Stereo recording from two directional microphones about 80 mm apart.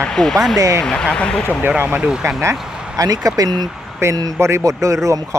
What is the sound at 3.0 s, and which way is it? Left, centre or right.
Speech, right.